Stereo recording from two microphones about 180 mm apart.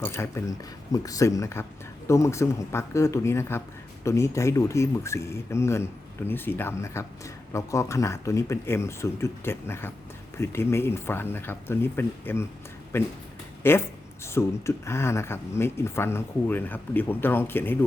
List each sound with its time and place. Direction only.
0.0 s speech: 15° left (ahead or behind)